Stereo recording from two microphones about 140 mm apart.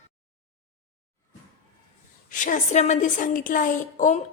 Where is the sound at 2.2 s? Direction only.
65° left (ahead or behind).